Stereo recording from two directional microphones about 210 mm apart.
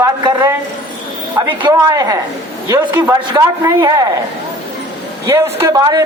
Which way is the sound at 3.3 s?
20° right (ahead or behind).